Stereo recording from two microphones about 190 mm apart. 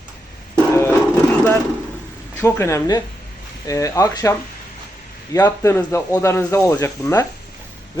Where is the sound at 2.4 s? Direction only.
15° left (ahead or behind).